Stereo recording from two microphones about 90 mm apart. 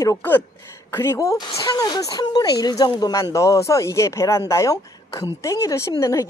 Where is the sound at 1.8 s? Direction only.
45° left (ahead or behind).